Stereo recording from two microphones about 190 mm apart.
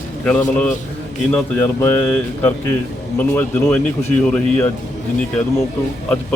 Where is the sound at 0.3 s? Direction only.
10° left (ahead or behind).